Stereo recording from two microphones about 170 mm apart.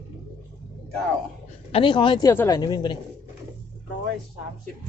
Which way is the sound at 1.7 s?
30° left (ahead or behind).